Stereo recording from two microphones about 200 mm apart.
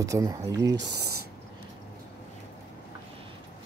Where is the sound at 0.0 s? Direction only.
15° right (ahead or behind).